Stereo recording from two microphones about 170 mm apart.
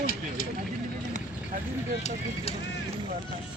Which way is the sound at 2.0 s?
35° left (ahead or behind).